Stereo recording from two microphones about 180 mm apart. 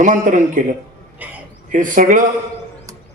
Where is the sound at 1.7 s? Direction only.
45° right (ahead or behind).